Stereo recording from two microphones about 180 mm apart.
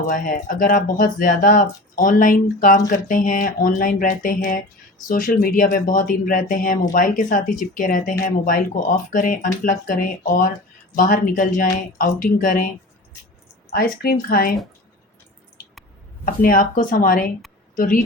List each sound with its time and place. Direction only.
0.1 s speech: 50° left (ahead or behind)
13.7 s speech: 55° left (ahead or behind)
16.2 s speech: 50° left (ahead or behind)